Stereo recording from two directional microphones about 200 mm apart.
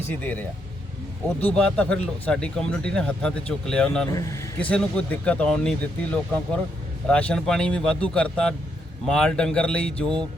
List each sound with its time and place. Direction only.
0.1 s speech: 10° left (ahead or behind)
4.1 s a man's voice: 15° left (ahead or behind)
4.7 s speech: 5° left (ahead or behind)